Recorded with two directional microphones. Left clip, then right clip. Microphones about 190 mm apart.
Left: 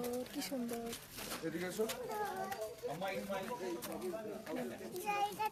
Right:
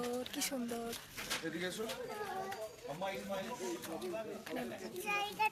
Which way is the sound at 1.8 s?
30° left (ahead or behind).